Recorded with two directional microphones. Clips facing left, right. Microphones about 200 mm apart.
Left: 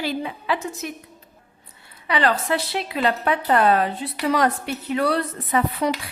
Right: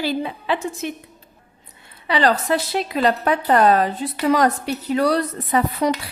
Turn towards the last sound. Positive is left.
turn(degrees=-40)  # may be behind; listen again after turning